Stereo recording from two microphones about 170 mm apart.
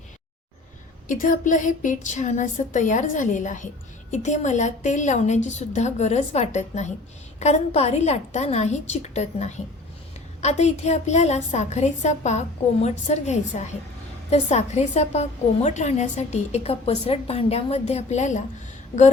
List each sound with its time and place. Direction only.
1.0 s a woman's voice: 50° left (ahead or behind)